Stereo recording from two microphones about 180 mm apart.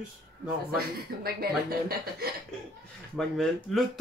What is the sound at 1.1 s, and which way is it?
Speech, 55° right (ahead or behind).